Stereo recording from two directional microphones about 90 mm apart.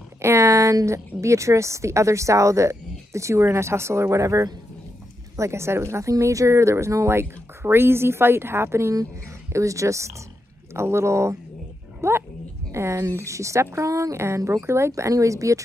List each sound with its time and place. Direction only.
0.2 s a woman's voice: 30° right (ahead or behind)